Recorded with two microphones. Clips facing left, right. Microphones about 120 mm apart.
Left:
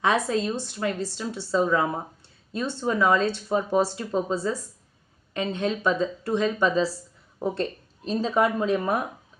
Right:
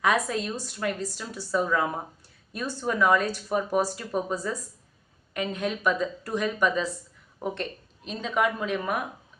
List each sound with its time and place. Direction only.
0.0 s speech: 25° left (ahead or behind)